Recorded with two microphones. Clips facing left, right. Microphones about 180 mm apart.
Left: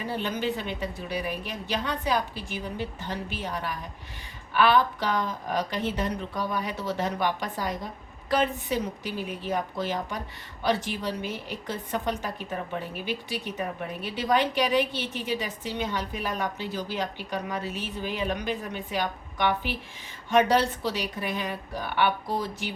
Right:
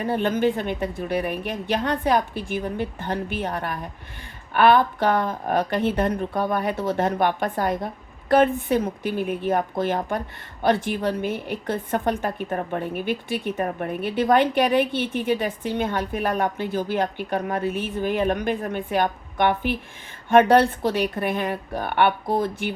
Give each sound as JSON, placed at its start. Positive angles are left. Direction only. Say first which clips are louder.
{"t": 0.0, "sound": "a woman's voice", "louder": "right 8 dB", "side_deg": -55}